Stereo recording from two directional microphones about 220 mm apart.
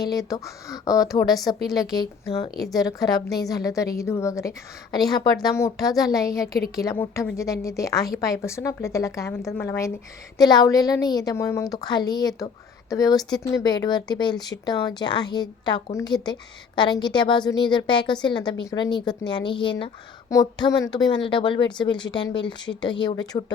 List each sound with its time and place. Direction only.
0.0 s a woman's voice: 15° left (ahead or behind)